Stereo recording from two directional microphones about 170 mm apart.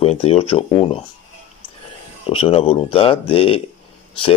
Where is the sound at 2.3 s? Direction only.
35° left (ahead or behind).